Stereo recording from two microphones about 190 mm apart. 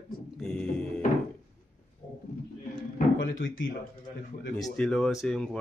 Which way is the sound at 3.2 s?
80° left.